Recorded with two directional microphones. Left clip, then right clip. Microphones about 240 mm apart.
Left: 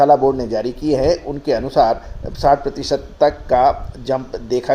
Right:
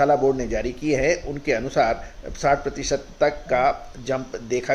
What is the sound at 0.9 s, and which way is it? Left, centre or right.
Speech, left.